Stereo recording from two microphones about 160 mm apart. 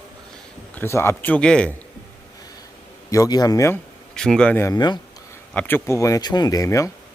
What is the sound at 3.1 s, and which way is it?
Speech, 20° left (ahead or behind).